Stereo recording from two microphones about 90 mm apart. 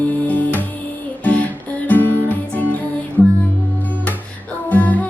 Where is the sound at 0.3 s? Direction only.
20° left (ahead or behind).